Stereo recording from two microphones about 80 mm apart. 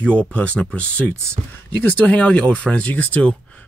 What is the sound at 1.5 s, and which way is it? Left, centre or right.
Speech, left.